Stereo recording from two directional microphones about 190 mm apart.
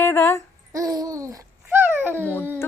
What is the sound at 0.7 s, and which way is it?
Babbling, 15° right (ahead or behind).